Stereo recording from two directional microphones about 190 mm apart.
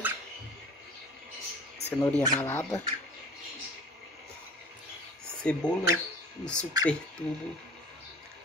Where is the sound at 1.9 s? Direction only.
10° left (ahead or behind).